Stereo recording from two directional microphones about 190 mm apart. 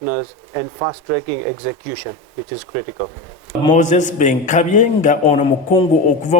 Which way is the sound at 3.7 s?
40° left (ahead or behind).